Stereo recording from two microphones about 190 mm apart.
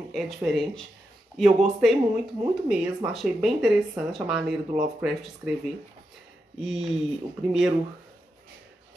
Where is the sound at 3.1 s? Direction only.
Centre (ahead or behind).